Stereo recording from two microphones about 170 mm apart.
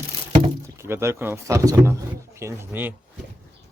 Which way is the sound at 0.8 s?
15° right (ahead or behind).